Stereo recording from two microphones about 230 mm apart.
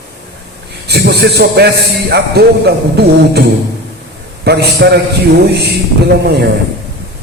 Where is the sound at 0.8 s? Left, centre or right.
Right.